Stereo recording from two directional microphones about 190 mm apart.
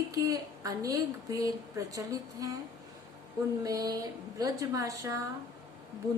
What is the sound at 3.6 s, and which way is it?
A woman's voice, 20° right (ahead or behind).